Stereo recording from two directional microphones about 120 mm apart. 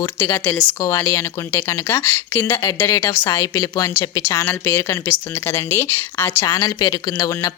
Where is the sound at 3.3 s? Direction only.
30° left (ahead or behind).